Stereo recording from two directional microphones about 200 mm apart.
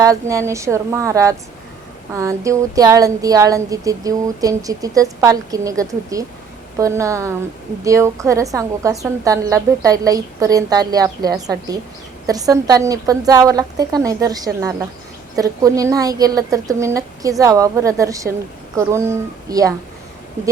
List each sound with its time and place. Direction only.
0.0 s speech: 15° right (ahead or behind)